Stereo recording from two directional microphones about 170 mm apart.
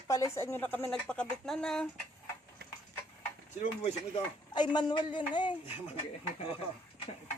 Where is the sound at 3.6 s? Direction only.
40° left (ahead or behind).